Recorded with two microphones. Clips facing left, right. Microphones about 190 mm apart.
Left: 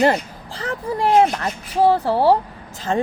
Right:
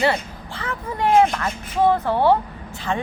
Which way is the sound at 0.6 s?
35° left (ahead or behind).